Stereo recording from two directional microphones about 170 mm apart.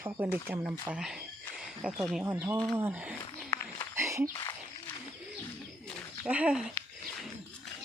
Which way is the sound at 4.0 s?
15° right (ahead or behind).